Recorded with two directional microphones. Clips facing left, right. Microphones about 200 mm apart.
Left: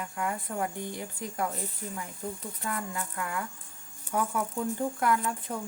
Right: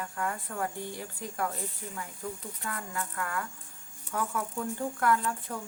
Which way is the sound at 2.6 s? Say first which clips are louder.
Left 3 dB; 20° left (ahead or behind).